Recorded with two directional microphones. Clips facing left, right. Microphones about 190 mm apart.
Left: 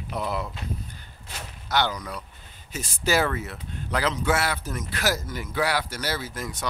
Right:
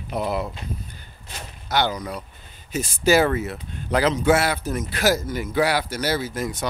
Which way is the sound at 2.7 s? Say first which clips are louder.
Right 6 dB; 15° right (ahead or behind).